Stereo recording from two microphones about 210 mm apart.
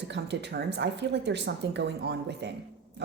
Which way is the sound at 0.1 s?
55° right (ahead or behind).